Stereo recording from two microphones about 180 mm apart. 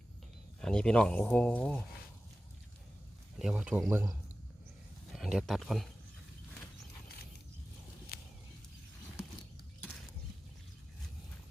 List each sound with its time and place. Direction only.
0.6 s speech: 5° left (ahead or behind)
3.3 s speech: 5° right (ahead or behind)
5.1 s speech: centre (ahead or behind)
8.1 s a sound: 55° left (ahead or behind)